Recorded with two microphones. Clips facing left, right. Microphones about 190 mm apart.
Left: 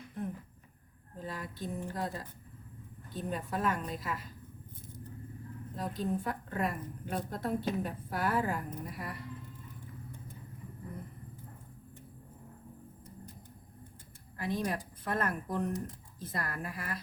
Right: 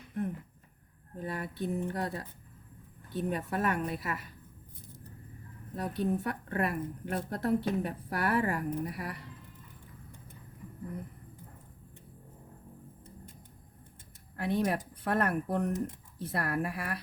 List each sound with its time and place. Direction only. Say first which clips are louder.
1.2 s a woman's voice: right 4 dB; 60° right (ahead or behind)
5.7 s a woman's voice: right 3 dB; 65° right (ahead or behind)
14.3 s a woman's voice: right 4 dB; 65° right (ahead or behind)